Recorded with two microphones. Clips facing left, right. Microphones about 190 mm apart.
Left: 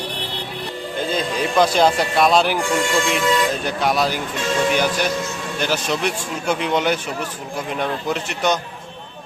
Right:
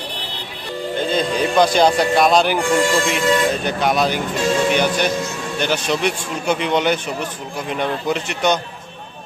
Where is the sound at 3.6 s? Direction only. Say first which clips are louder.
Right 2 dB; centre (ahead or behind).